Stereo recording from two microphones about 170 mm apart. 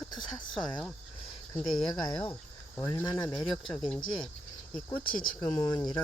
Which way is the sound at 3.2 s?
25° left (ahead or behind).